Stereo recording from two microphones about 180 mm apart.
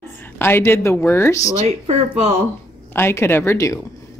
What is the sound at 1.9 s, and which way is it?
Speech, 35° right (ahead or behind).